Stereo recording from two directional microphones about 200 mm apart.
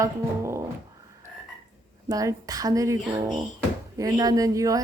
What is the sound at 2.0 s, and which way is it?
A woman's voice, 15° right (ahead or behind).